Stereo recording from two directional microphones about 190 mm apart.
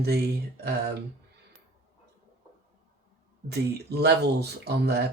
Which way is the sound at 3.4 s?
60° right (ahead or behind).